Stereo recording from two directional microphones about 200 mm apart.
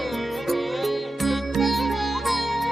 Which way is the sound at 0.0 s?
Centre (ahead or behind).